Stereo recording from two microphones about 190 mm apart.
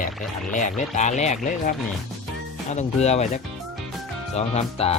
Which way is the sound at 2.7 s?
35° left (ahead or behind).